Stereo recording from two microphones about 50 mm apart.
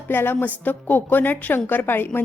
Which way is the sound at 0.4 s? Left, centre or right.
Left.